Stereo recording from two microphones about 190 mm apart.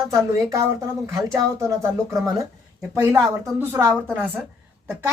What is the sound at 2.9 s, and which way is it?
A woman's voice, 15° right (ahead or behind).